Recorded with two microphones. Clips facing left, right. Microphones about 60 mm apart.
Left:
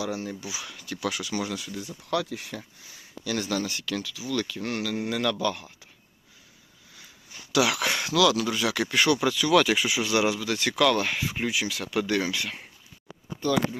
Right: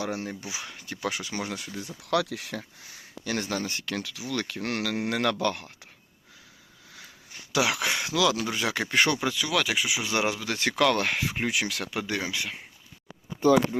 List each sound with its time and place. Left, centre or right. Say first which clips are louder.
0.0 s speech: left 1 dB; right
1.6 s speech: left 1 dB; right
2.0 s speech: right 2 dB; right
3.2 s speech: left 2 dB; right
7.5 s speech: left 2 dB; right
7.9 s a sound: left 1 dB; centre
8.1 s speech: left 4 dB; right
9.2 s speech: left 5 dB; centre
10.1 s speech: left 3 dB; right
11.9 s speech: left 4 dB; centre